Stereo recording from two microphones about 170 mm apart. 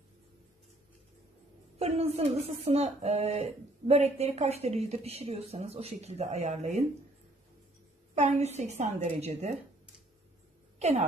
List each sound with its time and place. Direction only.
1.8 s speech: 35° right (ahead or behind)
8.1 s speech: 40° right (ahead or behind)
10.8 s speech: 45° right (ahead or behind)